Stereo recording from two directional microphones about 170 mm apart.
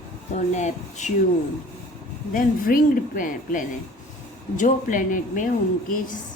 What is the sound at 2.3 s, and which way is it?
Speech, 55° left (ahead or behind).